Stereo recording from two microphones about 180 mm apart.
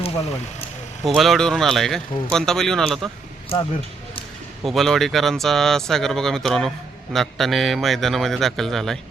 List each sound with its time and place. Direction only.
1.0 s speech: centre (ahead or behind)
3.5 s speech: 30° left (ahead or behind)
4.6 s speech: centre (ahead or behind)